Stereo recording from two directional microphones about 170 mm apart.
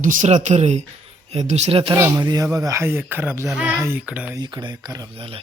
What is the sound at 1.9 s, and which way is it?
Speech, 15° right (ahead or behind).